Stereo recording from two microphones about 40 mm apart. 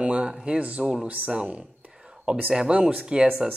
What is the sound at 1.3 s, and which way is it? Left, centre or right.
Speech, right.